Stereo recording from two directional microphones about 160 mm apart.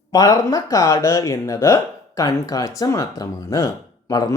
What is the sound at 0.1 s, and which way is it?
Speech, 20° left (ahead or behind).